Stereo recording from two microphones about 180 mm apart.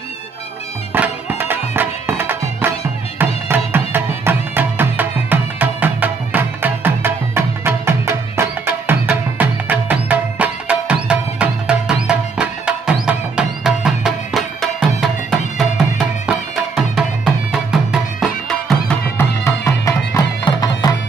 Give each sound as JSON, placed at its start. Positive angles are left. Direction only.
{"t": 0.9, "sound": "music", "side_deg": -10}
{"t": 16.3, "sound": "music", "side_deg": -5}
{"t": 19.1, "sound": "music", "side_deg": 15}